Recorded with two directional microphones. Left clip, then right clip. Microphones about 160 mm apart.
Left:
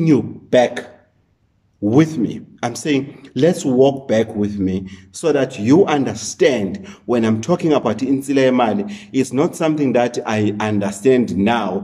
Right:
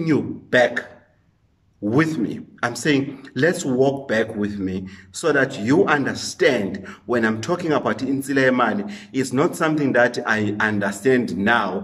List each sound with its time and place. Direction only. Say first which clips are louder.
0.0 s speech: left 5 dB; 15° left (ahead or behind)
1.9 s speech: left 4 dB; 15° left (ahead or behind)